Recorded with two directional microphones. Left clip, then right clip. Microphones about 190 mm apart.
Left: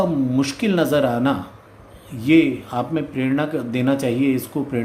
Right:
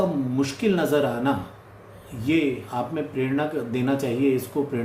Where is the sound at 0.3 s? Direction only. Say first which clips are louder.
Left 2 dB; 60° left (ahead or behind).